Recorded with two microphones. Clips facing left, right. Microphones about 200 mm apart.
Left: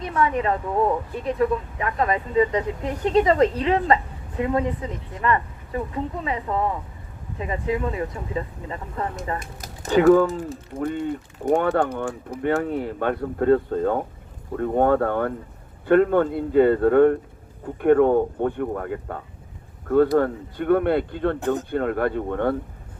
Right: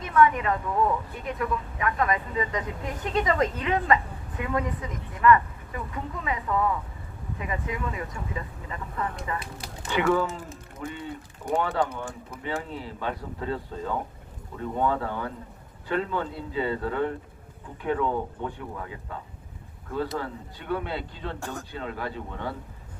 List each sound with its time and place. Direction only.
0.0 s speech: 30° left (ahead or behind)
10.8 s speech: 50° left (ahead or behind)